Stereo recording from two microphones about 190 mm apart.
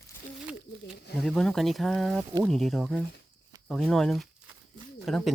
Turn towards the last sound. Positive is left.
turn(degrees=0)  # may be behind; listen again after turning